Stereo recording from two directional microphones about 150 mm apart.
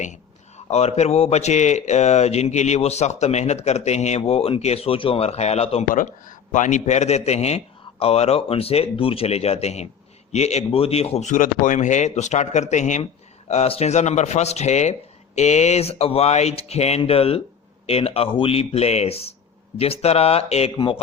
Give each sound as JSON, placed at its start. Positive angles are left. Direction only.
{"t": 0.0, "sound": "a man's voice", "side_deg": 50}
{"t": 5.9, "sound": "a man's voice", "side_deg": 60}
{"t": 20.7, "sound": "speech", "side_deg": 35}